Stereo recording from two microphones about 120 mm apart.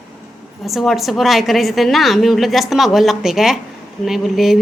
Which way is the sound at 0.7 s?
Centre (ahead or behind).